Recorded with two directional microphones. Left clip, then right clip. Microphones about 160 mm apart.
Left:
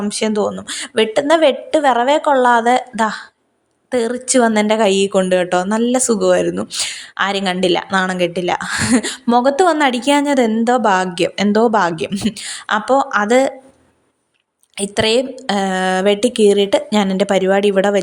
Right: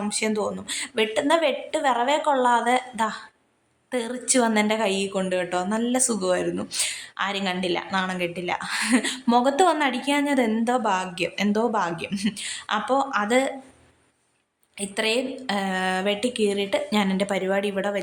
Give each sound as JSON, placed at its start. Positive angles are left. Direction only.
{"t": 0.0, "sound": "a woman's voice", "side_deg": 35}
{"t": 9.7, "sound": "a woman's voice", "side_deg": 40}
{"t": 14.8, "sound": "a woman's voice", "side_deg": 40}